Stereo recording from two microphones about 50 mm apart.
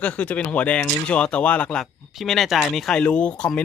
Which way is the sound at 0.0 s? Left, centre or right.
Left.